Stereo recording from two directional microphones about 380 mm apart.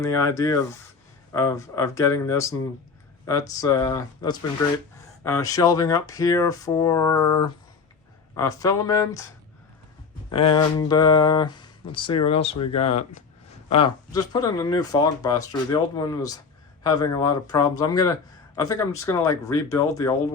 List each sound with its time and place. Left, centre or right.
0.0 s speech: centre
10.3 s speech: centre
12.4 s speech: left
13.7 s speech: centre